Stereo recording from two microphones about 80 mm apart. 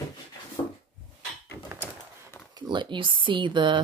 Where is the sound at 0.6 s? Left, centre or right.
Left.